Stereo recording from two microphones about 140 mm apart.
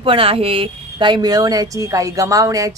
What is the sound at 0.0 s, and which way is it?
Speech, 40° right (ahead or behind).